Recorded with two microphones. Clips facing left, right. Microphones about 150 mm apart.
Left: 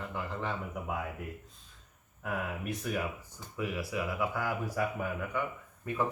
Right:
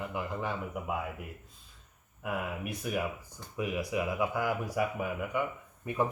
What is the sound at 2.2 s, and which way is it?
Speech, 10° right (ahead or behind).